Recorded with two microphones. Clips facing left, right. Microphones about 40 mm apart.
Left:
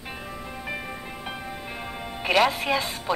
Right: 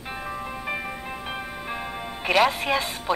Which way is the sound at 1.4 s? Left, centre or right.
Centre.